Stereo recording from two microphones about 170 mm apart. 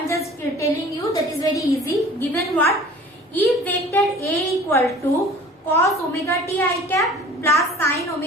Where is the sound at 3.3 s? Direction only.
10° left (ahead or behind).